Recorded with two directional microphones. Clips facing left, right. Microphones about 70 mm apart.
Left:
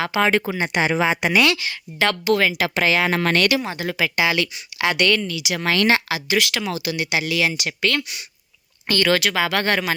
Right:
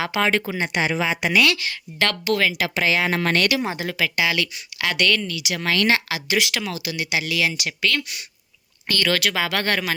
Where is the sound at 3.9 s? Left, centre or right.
Centre.